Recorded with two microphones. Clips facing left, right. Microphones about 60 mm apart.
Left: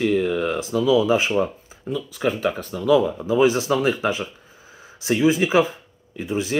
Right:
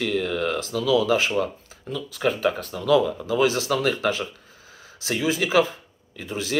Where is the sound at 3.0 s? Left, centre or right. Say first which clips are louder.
Left 4 dB; left.